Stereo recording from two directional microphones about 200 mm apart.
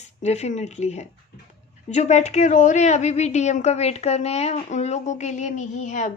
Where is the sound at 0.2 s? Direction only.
35° left (ahead or behind).